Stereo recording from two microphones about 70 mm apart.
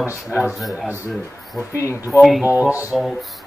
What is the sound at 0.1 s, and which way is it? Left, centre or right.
Speech, left.